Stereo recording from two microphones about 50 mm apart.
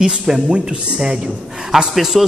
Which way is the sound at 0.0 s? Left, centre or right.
Centre.